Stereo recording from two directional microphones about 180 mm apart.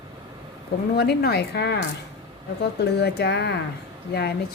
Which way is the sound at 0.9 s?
60° left (ahead or behind).